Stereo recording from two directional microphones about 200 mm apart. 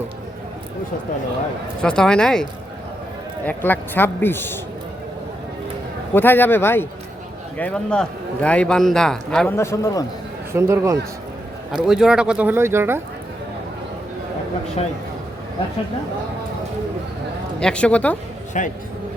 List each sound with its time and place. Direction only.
1.8 s a man's voice: 5° left (ahead or behind)
6.1 s a man's voice: 10° left (ahead or behind)
9.6 s a man's voice: 15° left (ahead or behind)
10.5 s speech: 15° right (ahead or behind)
11.9 s speech: 5° right (ahead or behind)
17.6 s a man's voice: 5° left (ahead or behind)
18.5 s a man's voice: 40° left (ahead or behind)